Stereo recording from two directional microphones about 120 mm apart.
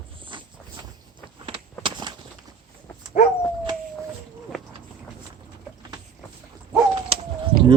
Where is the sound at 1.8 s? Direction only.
35° right (ahead or behind).